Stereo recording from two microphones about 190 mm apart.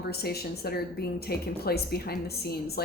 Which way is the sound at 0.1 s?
55° left (ahead or behind).